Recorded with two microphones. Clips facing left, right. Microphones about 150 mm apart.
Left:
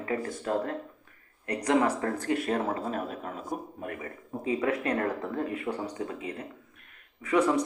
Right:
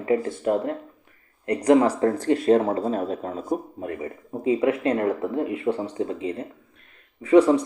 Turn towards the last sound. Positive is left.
turn(degrees=-30)  # may be behind; listen again after turning